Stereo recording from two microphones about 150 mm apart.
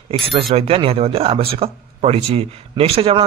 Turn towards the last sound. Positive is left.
turn(degrees=-40)  # may be behind; listen again after turning